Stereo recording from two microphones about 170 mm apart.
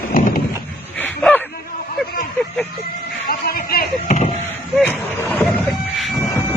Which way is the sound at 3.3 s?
60° left (ahead or behind).